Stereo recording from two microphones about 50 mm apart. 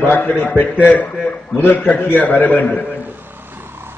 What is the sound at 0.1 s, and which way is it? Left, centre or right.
A man's voice, left.